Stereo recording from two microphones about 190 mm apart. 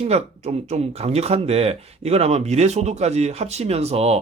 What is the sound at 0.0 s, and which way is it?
Speech, 35° right (ahead or behind).